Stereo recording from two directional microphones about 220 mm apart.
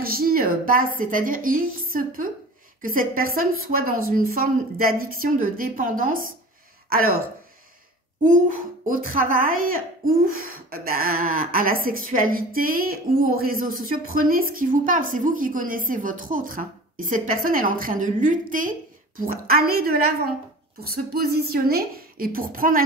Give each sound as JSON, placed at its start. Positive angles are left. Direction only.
{"t": 0.0, "sound": "a woman's voice", "side_deg": -40}
{"t": 8.2, "sound": "a woman's voice", "side_deg": -35}